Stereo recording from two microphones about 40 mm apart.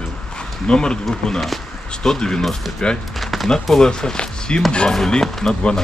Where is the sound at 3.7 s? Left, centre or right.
Centre.